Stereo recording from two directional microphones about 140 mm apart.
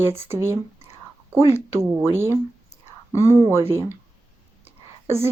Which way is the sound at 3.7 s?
15° right (ahead or behind).